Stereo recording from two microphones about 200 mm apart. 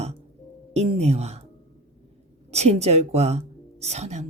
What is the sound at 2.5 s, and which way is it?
Speech, 30° right (ahead or behind).